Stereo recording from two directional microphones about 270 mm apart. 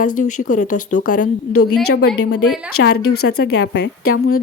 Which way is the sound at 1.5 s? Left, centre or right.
Left.